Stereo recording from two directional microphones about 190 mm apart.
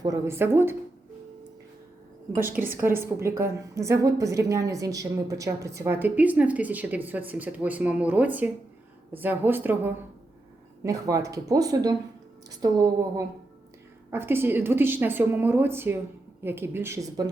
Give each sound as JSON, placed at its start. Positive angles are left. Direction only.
{"t": 0.0, "sound": "a woman's voice", "side_deg": -15}
{"t": 2.3, "sound": "a woman's voice", "side_deg": -10}